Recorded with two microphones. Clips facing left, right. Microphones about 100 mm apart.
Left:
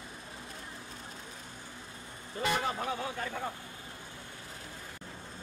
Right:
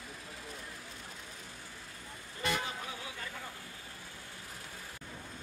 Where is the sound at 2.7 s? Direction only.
45° left (ahead or behind).